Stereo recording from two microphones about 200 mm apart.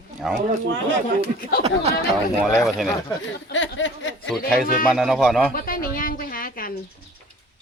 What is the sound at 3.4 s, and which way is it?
Speech, 65° left (ahead or behind).